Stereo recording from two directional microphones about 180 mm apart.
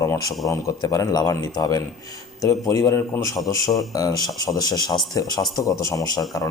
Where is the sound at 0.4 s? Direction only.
20° left (ahead or behind).